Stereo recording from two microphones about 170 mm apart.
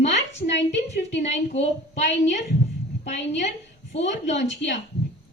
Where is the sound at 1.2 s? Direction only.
40° left (ahead or behind).